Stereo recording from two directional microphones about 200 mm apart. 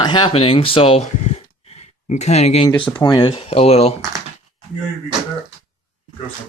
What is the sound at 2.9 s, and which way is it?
Speech, 20° left (ahead or behind).